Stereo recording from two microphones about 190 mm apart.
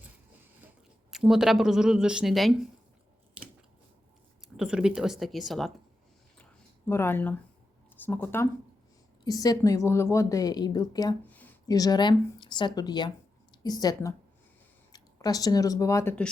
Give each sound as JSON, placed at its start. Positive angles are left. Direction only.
{"t": 1.1, "sound": "speech", "side_deg": 0}
{"t": 4.4, "sound": "speech", "side_deg": -5}
{"t": 6.4, "sound": "a sound", "side_deg": 10}
{"t": 7.9, "sound": "a woman's voice", "side_deg": 10}
{"t": 11.3, "sound": "a sound", "side_deg": 10}
{"t": 11.7, "sound": "a woman's voice", "side_deg": 20}